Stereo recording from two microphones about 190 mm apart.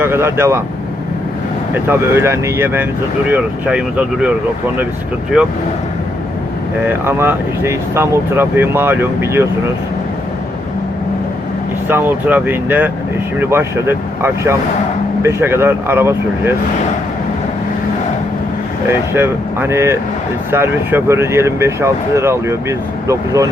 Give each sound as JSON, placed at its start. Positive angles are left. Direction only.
{"t": 0.0, "sound": "speech", "side_deg": -15}
{"t": 1.9, "sound": "speech", "side_deg": -15}
{"t": 6.8, "sound": "speech", "side_deg": -10}
{"t": 11.9, "sound": "speech", "side_deg": -10}
{"t": 18.9, "sound": "speech", "side_deg": -15}